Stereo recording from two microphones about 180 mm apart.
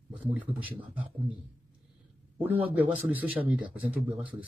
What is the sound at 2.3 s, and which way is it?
A man's voice, 10° right (ahead or behind).